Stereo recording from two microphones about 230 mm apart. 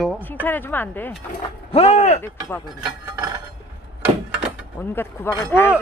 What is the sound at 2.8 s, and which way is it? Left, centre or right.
Chink, centre.